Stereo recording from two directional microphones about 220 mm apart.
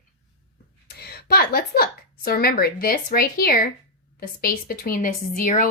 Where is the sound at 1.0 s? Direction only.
45° left (ahead or behind).